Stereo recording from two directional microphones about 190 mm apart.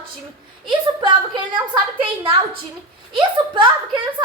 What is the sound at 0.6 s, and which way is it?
A woman's voice, 25° right (ahead or behind).